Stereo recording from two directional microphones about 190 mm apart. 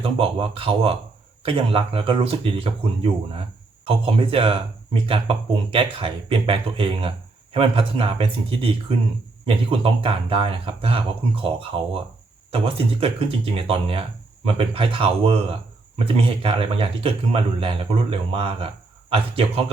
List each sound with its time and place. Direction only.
0.0 s a man's voice: 30° right (ahead or behind)